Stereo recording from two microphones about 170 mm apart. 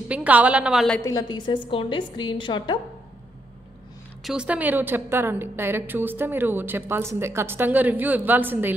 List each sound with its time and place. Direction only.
0.1 s a woman's voice: 10° right (ahead or behind)
1.0 s a woman's voice: 25° left (ahead or behind)
4.2 s a woman's voice: 5° right (ahead or behind)